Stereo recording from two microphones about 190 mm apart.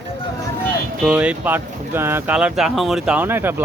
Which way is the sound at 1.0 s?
5° right (ahead or behind).